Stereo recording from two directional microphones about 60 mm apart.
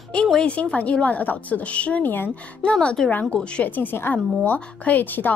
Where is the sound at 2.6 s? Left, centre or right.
Centre.